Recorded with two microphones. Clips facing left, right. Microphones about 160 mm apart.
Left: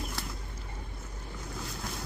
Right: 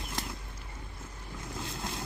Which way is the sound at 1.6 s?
25° right (ahead or behind).